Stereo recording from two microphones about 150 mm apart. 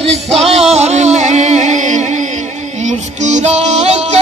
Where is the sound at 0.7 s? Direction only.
50° right (ahead or behind).